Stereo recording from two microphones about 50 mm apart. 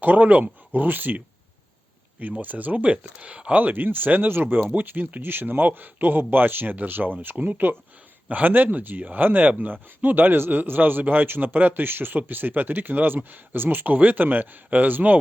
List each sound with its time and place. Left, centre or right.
0.0 s speech: right
2.4 s speech: right
3.6 s speech: right